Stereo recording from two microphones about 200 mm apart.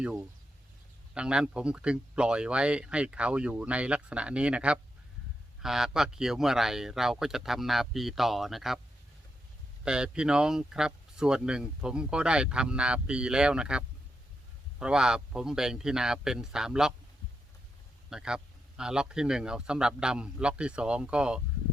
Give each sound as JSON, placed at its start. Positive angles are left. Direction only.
{"t": 0.0, "sound": "speech", "side_deg": -5}
{"t": 9.8, "sound": "speech", "side_deg": -5}
{"t": 18.1, "sound": "speech", "side_deg": -5}